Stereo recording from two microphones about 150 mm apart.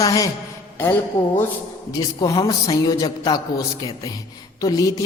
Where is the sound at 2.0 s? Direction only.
30° left (ahead or behind).